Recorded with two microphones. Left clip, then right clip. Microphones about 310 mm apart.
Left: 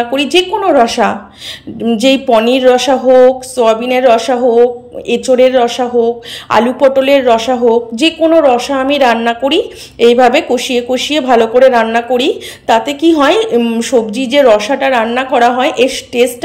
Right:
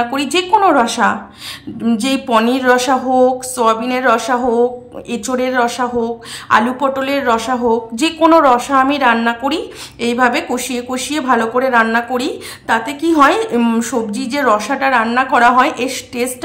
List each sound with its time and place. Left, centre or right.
0.1 s speech: centre